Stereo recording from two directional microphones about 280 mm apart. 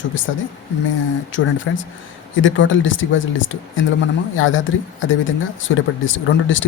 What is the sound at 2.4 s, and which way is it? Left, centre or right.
Speech, left.